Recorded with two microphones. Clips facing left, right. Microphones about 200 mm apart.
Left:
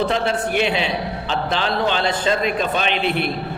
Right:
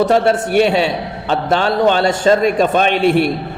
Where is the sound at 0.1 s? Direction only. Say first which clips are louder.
Right 7 dB; 45° right (ahead or behind).